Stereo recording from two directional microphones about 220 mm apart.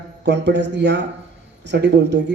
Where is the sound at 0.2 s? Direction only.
50° right (ahead or behind).